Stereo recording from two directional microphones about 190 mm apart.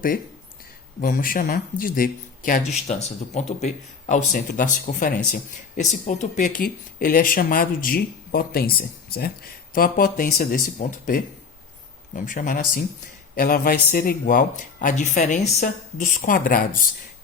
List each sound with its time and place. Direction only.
1.0 s speech: 45° left (ahead or behind)
2.8 s speech: 35° left (ahead or behind)